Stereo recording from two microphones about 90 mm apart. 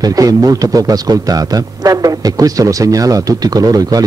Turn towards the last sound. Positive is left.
turn(degrees=-45)  # may be behind; listen again after turning